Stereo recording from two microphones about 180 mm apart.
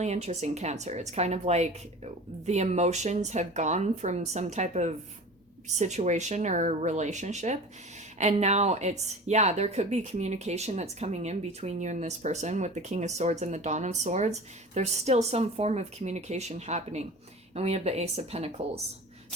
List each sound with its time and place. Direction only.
0.0 s a woman's voice: 40° right (ahead or behind)